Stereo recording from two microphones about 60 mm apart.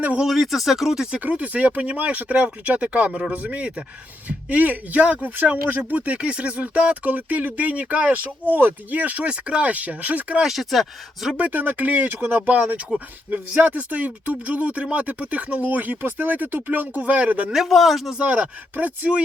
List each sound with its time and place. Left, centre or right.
0.2 s speech: centre
1.2 s speech: right
10.4 s speech: centre
11.3 s speech: right
17.5 s speech: centre
18.2 s speech: right